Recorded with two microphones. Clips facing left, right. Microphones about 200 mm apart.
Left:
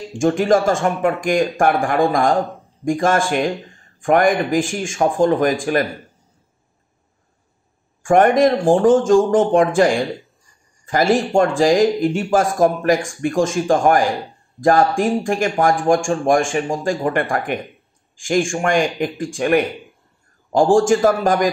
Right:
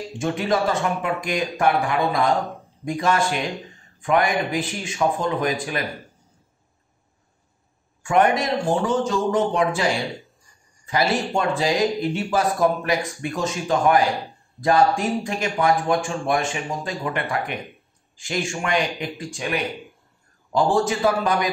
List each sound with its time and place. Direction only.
0.2 s speech: 45° left (ahead or behind)
8.0 s speech: 50° left (ahead or behind)